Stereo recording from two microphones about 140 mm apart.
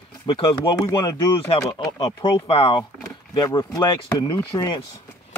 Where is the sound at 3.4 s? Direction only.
25° left (ahead or behind).